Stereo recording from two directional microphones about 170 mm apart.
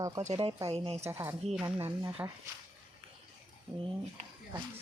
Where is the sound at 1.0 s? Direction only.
15° right (ahead or behind).